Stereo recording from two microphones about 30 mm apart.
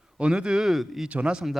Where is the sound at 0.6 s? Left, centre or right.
Centre.